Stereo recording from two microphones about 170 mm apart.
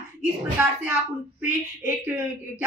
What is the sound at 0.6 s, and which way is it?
A woman's voice, 5° right (ahead or behind).